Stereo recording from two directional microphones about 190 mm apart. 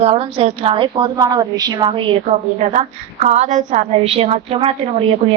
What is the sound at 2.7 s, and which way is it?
A woman's voice, 40° right (ahead or behind).